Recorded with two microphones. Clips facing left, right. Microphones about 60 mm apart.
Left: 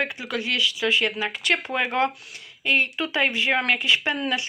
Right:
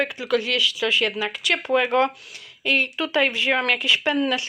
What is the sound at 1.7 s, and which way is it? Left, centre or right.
Speech, centre.